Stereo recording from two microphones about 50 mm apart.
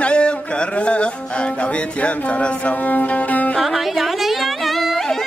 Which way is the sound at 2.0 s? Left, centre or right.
Left.